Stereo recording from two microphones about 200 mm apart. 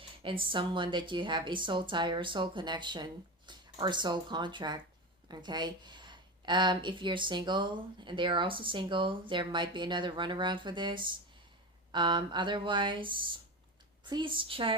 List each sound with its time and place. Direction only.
0.2 s speech: 25° right (ahead or behind)